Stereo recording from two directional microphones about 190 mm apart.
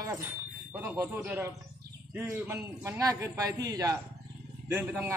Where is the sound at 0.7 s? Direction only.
10° right (ahead or behind).